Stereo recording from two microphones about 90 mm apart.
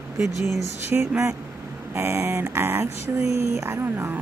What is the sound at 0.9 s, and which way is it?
Speech, 30° right (ahead or behind).